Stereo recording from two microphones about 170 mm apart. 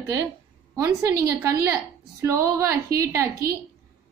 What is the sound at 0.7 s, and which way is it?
A woman's voice, 15° right (ahead or behind).